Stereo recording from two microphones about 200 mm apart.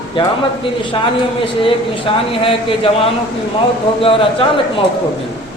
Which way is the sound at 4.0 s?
25° left (ahead or behind).